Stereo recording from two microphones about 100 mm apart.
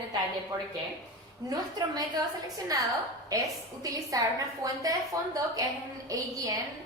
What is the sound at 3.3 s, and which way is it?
A woman's voice, 40° right (ahead or behind).